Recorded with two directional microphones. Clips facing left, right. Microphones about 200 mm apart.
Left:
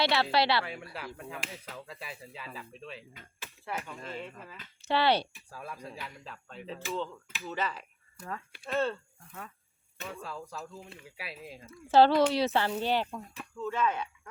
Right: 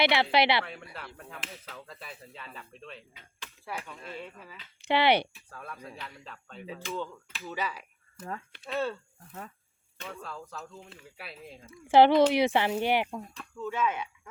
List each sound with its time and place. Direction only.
0.0 s speech: 15° right (ahead or behind)
0.6 s speech: 5° left (ahead or behind)
3.4 s a sound: 5° left (ahead or behind)
4.9 s speech: 15° right (ahead or behind)
5.5 s speech: 5° left (ahead or behind)
10.0 s speech: 5° left (ahead or behind)
11.7 s speech: 15° right (ahead or behind)